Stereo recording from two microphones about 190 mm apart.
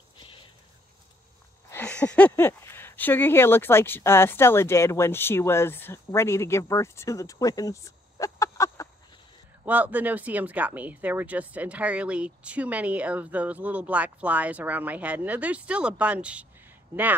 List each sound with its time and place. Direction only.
1.7 s speech: 5° left (ahead or behind)
9.7 s speech: 10° right (ahead or behind)